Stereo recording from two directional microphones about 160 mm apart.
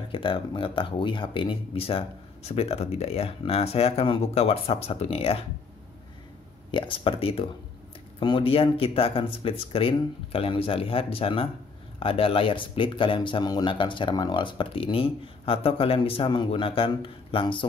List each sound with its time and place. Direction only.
0.1 s speech: 35° left (ahead or behind)
6.7 s speech: 30° left (ahead or behind)